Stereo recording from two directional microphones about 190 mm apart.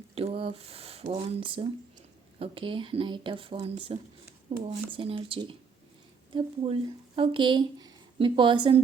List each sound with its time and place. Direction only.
0.1 s speech: 30° right (ahead or behind)